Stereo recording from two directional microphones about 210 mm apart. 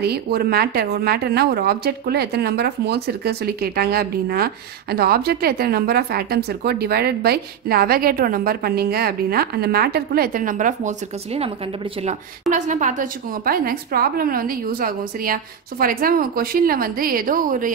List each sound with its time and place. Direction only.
0.0 s a woman's voice: 50° right (ahead or behind)